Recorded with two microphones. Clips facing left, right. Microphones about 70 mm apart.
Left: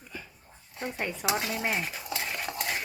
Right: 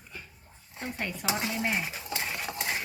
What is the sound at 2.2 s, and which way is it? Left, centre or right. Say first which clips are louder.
Cutlery: left 1 dB; centre.